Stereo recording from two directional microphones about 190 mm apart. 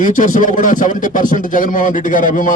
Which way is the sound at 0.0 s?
45° left (ahead or behind).